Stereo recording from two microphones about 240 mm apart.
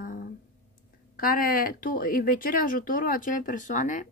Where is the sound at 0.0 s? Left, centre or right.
Left.